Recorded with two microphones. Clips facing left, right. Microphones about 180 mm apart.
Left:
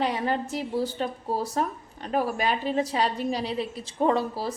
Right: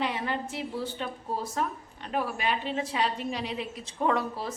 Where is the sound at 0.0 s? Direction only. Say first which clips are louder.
Left 4 dB; 40° left (ahead or behind).